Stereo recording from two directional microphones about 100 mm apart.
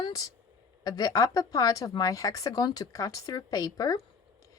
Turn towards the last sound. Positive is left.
turn(degrees=45)  # may be behind; listen again after turning